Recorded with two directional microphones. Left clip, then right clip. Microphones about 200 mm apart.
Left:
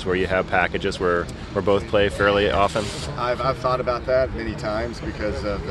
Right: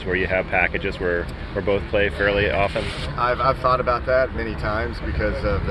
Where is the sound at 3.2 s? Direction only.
5° left (ahead or behind).